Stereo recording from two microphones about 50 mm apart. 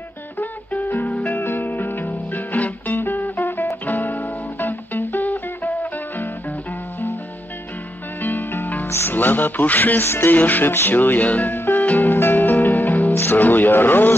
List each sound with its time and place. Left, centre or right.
0.4 s music: left
1.4 s music: left
8.2 s music: left
8.8 s music: left
9.1 s speech: left
10.3 s music: left
13.1 s speech: left